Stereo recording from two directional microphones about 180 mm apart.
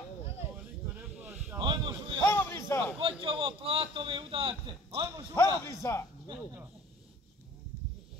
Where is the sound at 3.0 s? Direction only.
30° right (ahead or behind).